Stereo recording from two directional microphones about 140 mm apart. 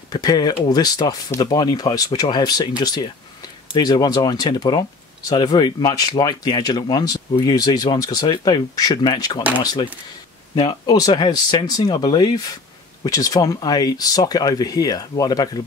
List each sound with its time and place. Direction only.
0.1 s speech: 30° left (ahead or behind)